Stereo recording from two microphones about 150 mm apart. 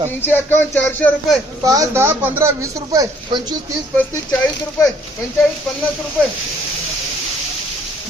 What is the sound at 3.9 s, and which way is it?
Speech, 10° left (ahead or behind).